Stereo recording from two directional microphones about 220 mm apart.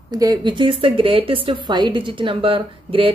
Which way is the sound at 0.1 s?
15° right (ahead or behind).